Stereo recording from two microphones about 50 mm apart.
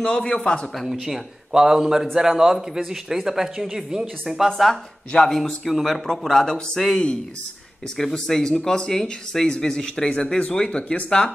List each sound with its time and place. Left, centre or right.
0.0 s speech: centre
0.8 s speech: centre
4.5 s speech: centre